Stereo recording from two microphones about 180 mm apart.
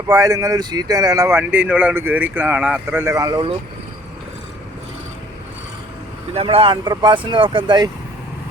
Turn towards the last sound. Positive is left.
turn(degrees=-25)  # may be behind; listen again after turning